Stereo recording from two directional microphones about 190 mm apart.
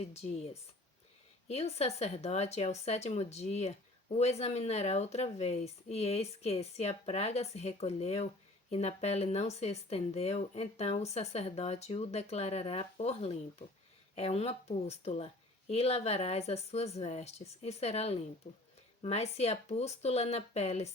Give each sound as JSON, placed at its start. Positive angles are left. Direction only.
{"t": 0.0, "sound": "speech", "side_deg": 35}